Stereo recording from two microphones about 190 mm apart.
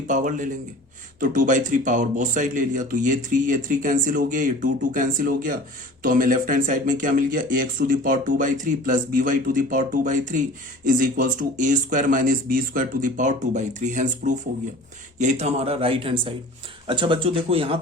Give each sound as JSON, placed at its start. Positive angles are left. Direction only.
{"t": 0.1, "sound": "speech", "side_deg": -40}